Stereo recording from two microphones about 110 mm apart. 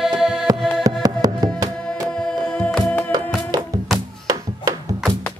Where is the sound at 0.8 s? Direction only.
35° right (ahead or behind).